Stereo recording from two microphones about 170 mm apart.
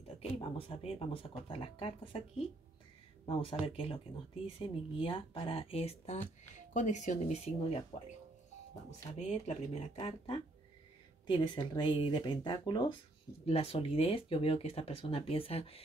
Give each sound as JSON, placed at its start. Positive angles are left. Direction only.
{"t": 0.2, "sound": "speech", "side_deg": 30}
{"t": 3.3, "sound": "speech", "side_deg": 30}
{"t": 9.2, "sound": "speech", "side_deg": 45}
{"t": 11.2, "sound": "speech", "side_deg": 25}